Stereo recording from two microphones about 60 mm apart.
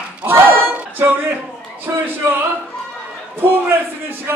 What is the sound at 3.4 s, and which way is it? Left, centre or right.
Speech, right.